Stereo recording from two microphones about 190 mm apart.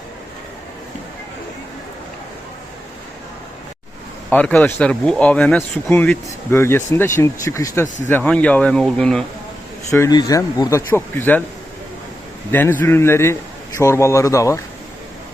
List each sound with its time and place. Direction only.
4.3 s speech: 10° left (ahead or behind)
9.9 s speech: 15° left (ahead or behind)
12.5 s speech: 10° left (ahead or behind)